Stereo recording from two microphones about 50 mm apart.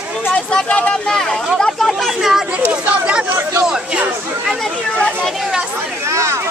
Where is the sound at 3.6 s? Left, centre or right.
Centre.